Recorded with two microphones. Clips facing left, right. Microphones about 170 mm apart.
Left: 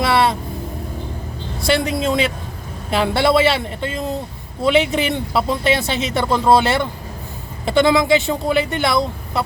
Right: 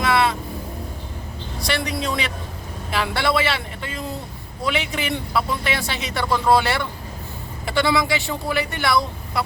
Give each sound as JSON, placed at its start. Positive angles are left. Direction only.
{"t": 0.0, "sound": "vehicle", "side_deg": 30}
{"t": 1.6, "sound": "speech", "side_deg": 25}